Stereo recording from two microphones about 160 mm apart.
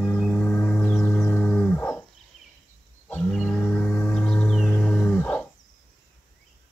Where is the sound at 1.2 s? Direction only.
10° left (ahead or behind).